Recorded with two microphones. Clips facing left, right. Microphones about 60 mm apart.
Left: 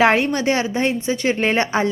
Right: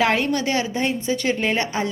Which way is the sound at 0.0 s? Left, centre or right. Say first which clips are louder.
Left 4 dB; left.